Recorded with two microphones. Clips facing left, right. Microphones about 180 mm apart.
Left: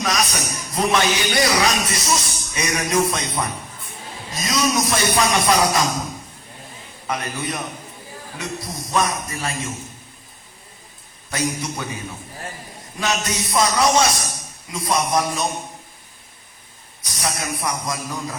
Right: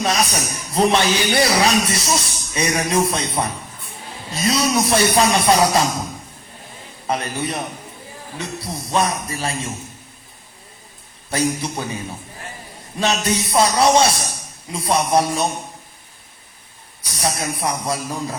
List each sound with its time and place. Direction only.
0.0 s a man's voice: 30° right (ahead or behind)
7.1 s a man's voice: 30° right (ahead or behind)
11.3 s a man's voice: 30° right (ahead or behind)
13.0 s music: 30° right (ahead or behind)
14.7 s a man's voice: 30° right (ahead or behind)
17.2 s a man's voice: 30° right (ahead or behind)